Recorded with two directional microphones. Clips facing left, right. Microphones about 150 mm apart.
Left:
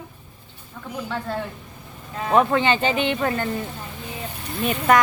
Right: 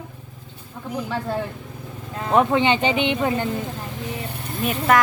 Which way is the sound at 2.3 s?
15° right (ahead or behind).